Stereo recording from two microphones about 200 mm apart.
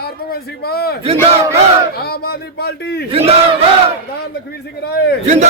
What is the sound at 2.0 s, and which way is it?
A man's voice, 50° left (ahead or behind).